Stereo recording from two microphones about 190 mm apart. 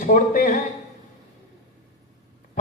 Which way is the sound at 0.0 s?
45° left (ahead or behind).